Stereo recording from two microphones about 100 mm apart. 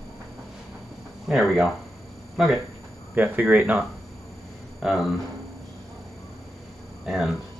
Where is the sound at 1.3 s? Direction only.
Centre (ahead or behind).